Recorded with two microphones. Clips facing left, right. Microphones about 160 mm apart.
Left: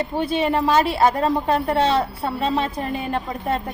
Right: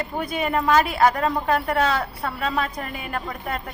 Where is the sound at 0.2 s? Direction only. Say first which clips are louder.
Left 4 dB; 30° left (ahead or behind).